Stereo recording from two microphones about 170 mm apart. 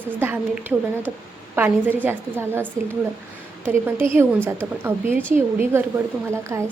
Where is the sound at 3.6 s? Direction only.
15° right (ahead or behind).